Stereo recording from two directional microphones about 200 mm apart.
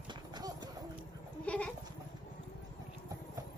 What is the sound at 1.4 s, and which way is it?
Goat, 5° left (ahead or behind).